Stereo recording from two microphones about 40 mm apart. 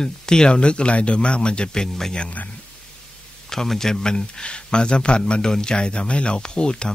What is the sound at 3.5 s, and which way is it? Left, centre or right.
A man's voice, centre.